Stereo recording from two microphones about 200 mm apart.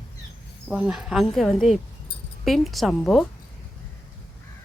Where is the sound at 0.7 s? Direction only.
5° right (ahead or behind).